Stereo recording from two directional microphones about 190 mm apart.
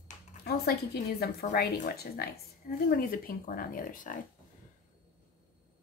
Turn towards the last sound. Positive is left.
turn(degrees=45)  # may be behind; listen again after turning